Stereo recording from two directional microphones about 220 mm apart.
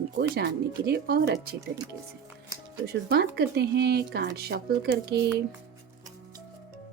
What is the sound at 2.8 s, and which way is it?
Speech, 45° right (ahead or behind).